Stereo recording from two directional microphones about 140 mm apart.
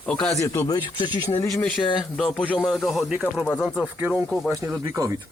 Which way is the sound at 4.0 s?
5° right (ahead or behind).